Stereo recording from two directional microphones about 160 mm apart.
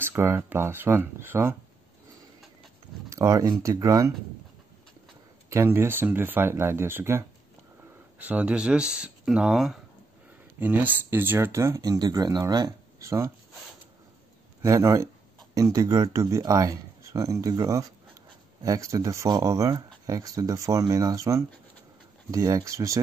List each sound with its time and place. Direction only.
0.0 s speech: 15° right (ahead or behind)
3.1 s speech: 20° right (ahead or behind)
5.5 s speech: 15° right (ahead or behind)
14.6 s speech: 20° right (ahead or behind)